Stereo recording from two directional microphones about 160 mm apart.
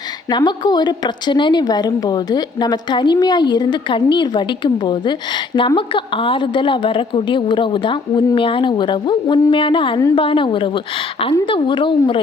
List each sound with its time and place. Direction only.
0.3 s a woman's voice: 25° left (ahead or behind)